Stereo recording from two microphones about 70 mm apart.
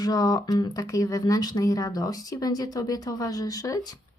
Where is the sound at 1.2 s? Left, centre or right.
Left.